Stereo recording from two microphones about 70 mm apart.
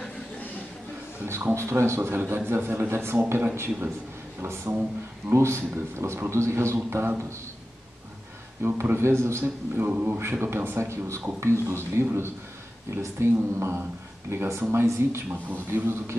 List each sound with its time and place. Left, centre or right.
1.2 s speech: right
8.6 s speech: right